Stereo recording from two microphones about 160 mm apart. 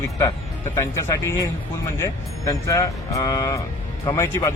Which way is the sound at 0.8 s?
20° left (ahead or behind).